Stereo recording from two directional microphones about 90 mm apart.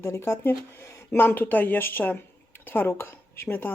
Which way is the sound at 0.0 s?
30° left (ahead or behind).